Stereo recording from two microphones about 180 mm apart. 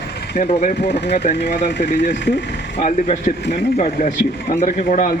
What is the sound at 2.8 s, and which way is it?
Speech, 40° left (ahead or behind).